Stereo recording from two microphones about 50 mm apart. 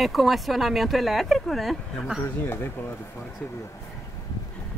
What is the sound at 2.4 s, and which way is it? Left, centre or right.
Speech, left.